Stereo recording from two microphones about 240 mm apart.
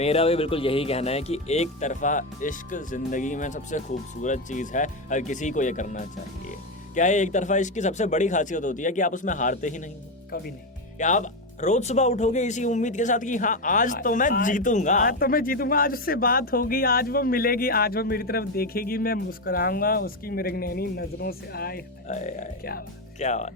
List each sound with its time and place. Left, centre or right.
0.0 s speech: left
10.9 s speech: left